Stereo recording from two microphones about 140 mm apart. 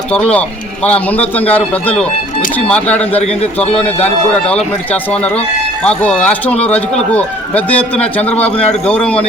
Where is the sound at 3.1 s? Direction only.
50° left (ahead or behind).